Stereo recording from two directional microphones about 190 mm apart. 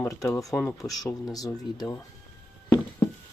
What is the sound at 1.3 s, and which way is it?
Speech, 20° left (ahead or behind).